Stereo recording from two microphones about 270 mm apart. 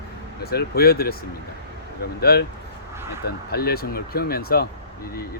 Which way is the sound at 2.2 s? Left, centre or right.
Left.